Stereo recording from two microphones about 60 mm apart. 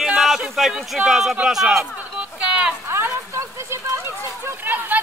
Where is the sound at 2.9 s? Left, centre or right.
Right.